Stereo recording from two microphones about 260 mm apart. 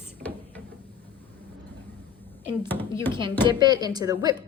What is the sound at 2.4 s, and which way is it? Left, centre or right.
Speech, centre.